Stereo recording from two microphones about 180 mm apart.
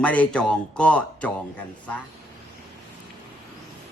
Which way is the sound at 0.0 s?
10° left (ahead or behind).